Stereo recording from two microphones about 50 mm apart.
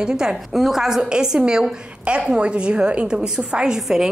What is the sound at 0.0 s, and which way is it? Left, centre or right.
A woman's voice, centre.